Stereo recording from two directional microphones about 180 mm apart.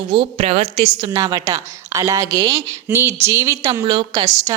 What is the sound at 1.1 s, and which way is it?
A woman's voice, 20° right (ahead or behind).